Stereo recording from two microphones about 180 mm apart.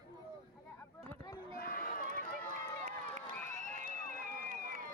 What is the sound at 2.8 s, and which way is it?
Crowd, 50° right (ahead or behind).